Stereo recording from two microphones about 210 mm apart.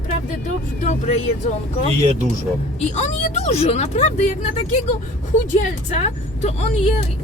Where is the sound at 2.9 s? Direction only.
35° left (ahead or behind).